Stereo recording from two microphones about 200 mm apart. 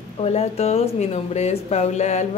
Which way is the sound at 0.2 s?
30° left (ahead or behind).